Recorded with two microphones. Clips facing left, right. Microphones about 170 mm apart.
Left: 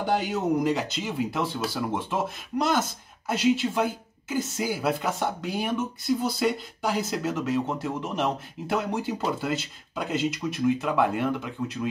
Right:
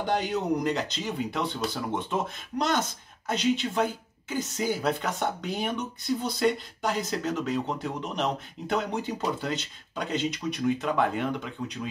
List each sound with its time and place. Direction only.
0.0 s speech: 5° left (ahead or behind)